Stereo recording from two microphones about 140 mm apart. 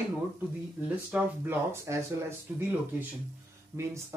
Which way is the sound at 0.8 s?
10° right (ahead or behind).